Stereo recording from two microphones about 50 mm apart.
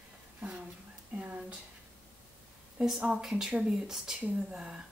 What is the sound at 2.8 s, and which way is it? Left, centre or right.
Speech, centre.